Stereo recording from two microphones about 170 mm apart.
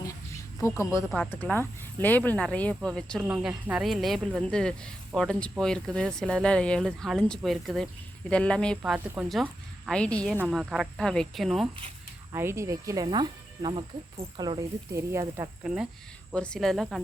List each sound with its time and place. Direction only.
0.6 s speech: 15° left (ahead or behind)
3.2 s speech: 10° right (ahead or behind)
10.3 s speech: 5° right (ahead or behind)
12.3 s speech: 15° right (ahead or behind)
15.6 s speech: 5° right (ahead or behind)